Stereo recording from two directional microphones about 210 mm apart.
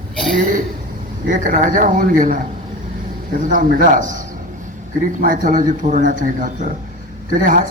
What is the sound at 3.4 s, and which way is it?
Speech, 40° right (ahead or behind).